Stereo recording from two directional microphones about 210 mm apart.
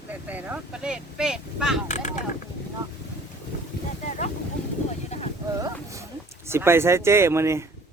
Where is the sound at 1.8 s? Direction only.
35° left (ahead or behind).